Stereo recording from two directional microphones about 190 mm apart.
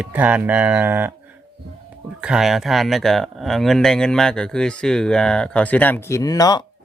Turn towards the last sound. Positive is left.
turn(degrees=20)  # may be behind; listen again after turning